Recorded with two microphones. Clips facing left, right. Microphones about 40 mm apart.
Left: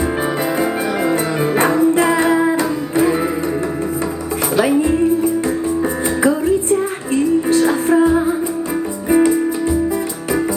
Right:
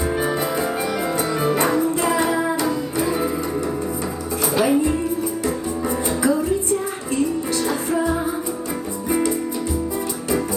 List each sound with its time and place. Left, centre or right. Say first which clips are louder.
1.5 s music: left 6 dB; left
4.5 s music: left 3 dB; left
6.2 s music: left 5 dB; left
9.0 s music: left 8 dB; left